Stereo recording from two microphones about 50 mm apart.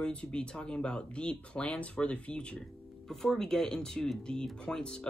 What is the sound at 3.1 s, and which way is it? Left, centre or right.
Speech, centre.